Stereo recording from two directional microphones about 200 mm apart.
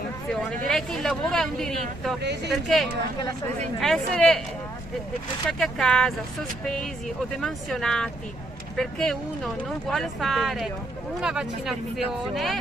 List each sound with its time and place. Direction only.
0.7 s speech: 5° left (ahead or behind)
2.2 s speech: 55° right (ahead or behind)
2.5 s speech: centre (ahead or behind)
5.5 s speech: centre (ahead or behind)
7.4 s speech: centre (ahead or behind)